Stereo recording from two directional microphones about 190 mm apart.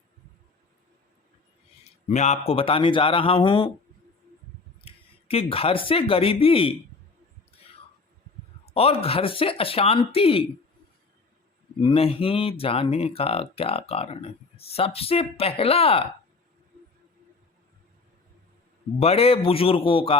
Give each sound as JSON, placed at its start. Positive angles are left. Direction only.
{"t": 2.0, "sound": "speech", "side_deg": 35}
{"t": 4.9, "sound": "speech", "side_deg": 30}
{"t": 8.6, "sound": "speech", "side_deg": 30}
{"t": 11.8, "sound": "speech", "side_deg": 30}
{"t": 18.9, "sound": "speech", "side_deg": 30}